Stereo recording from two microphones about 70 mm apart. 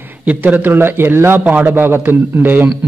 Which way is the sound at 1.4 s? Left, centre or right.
Right.